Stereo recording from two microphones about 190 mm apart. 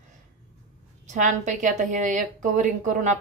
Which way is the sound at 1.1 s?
40° right (ahead or behind).